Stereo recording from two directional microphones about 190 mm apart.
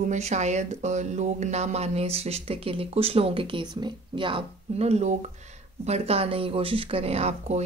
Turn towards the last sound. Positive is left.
turn(degrees=-35)  # may be behind; listen again after turning